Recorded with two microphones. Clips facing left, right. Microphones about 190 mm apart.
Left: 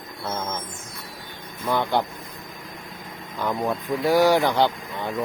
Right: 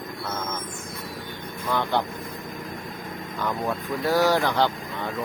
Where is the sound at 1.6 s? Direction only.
10° left (ahead or behind).